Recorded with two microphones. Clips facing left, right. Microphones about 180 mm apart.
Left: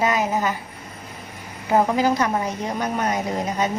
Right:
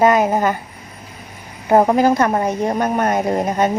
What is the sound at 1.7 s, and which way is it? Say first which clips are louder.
A woman's voice: right 6 dB; 55° right (ahead or behind).